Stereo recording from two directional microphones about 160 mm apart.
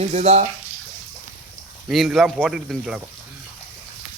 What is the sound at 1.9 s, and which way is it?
Speech, centre (ahead or behind).